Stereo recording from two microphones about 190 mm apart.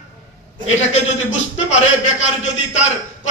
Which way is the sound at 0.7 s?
35° left (ahead or behind).